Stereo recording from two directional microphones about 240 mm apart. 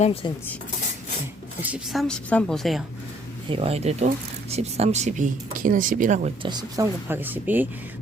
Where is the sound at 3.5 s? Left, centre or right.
Right; by 7.7 s centre.